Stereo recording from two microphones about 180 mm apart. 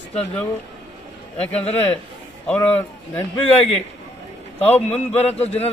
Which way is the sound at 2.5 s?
10° left (ahead or behind).